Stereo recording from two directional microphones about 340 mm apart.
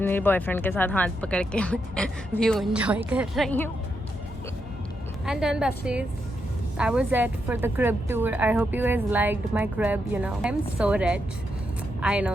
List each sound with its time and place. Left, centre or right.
0.0 s a woman's voice: centre
5.2 s a woman's voice: centre